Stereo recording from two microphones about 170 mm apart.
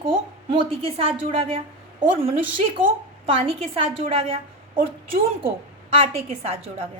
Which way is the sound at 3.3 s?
30° right (ahead or behind).